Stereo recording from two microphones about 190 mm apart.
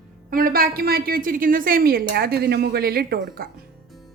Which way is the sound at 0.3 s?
50° right (ahead or behind).